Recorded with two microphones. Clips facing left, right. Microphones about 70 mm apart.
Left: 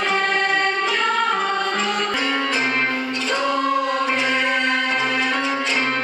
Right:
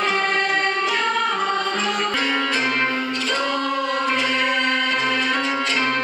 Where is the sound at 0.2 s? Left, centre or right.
Centre.